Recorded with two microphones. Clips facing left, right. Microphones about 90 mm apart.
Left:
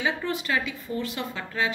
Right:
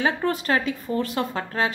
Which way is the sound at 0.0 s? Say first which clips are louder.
Right 4 dB; 45° right (ahead or behind).